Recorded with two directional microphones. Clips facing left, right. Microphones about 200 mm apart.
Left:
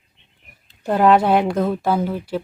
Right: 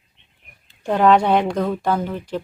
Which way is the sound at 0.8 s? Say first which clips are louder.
Left 1 dB; 5° left (ahead or behind).